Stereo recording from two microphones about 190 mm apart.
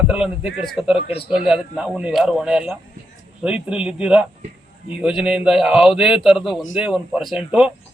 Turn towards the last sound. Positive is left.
turn(degrees=-5)  # may be behind; listen again after turning